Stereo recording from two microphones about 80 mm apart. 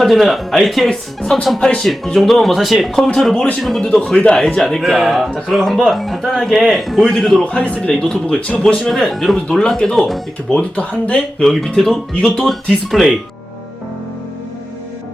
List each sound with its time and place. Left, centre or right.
0.0 s speech: centre
7.4 s speech: centre
11.4 s speech: centre